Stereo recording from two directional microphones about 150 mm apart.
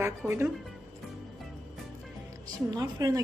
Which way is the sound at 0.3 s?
15° right (ahead or behind).